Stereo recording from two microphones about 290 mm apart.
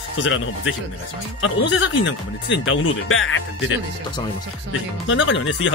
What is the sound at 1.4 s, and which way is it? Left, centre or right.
Speech, left.